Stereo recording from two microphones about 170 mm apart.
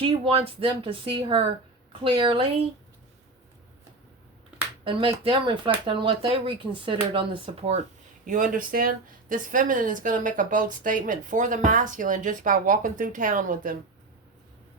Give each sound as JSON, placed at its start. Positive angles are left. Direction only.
{"t": 0.0, "sound": "a woman's voice", "side_deg": -30}
{"t": 4.8, "sound": "speech", "side_deg": -30}
{"t": 8.3, "sound": "a woman's voice", "side_deg": -50}